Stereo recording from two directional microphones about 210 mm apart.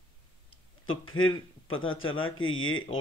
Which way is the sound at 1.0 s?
75° left (ahead or behind).